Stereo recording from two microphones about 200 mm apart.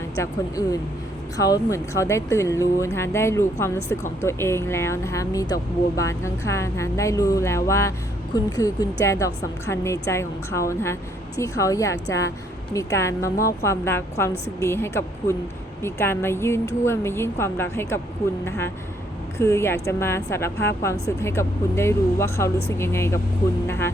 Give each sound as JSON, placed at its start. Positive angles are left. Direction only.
{"t": 0.2, "sound": "a woman's voice", "side_deg": 15}